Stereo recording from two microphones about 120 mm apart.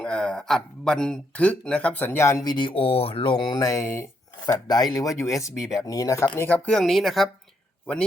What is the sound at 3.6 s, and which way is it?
Speech, 25° left (ahead or behind).